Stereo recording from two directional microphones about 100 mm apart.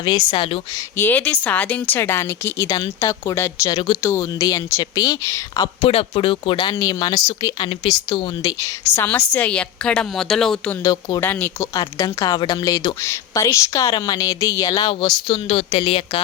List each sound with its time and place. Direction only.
0.0 s a woman's voice: 45° left (ahead or behind)
0.9 s a woman's voice: 20° left (ahead or behind); by 5.6 s 35° left (ahead or behind)
5.8 s speech: 70° left (ahead or behind)
6.7 s a woman's voice: 40° left (ahead or behind)
7.6 s a woman's voice: 55° left (ahead or behind)
8.4 s a woman's voice: 35° left (ahead or behind)
9.0 s a woman's voice: 15° left (ahead or behind)
11.2 s speech: 20° left (ahead or behind)
11.7 s a woman's voice: 35° left (ahead or behind)
14.8 s a woman's voice: 50° left (ahead or behind)
15.4 s a woman's voice: 70° left (ahead or behind)